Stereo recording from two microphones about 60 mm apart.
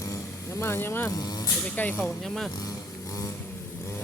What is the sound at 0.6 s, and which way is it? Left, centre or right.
Speech, left.